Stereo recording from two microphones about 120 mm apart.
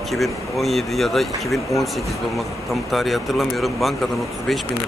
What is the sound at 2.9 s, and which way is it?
Speech, centre (ahead or behind).